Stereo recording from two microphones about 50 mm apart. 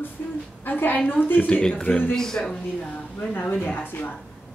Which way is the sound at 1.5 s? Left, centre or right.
Left.